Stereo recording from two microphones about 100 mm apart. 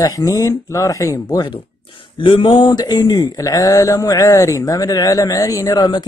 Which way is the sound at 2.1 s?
55° left (ahead or behind).